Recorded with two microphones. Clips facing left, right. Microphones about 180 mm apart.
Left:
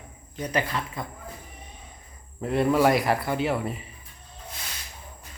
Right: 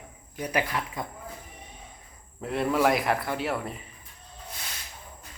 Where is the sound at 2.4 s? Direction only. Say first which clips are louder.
Left 3 dB; centre (ahead or behind).